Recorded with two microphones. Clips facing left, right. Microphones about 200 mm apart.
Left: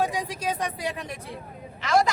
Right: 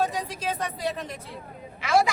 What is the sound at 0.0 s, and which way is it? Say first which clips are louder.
Speech: left 1 dB; 10° left (ahead or behind).